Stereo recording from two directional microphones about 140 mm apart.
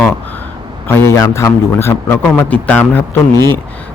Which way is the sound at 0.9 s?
15° left (ahead or behind).